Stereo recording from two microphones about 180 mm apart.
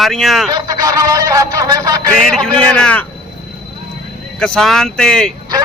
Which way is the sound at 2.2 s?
5° left (ahead or behind).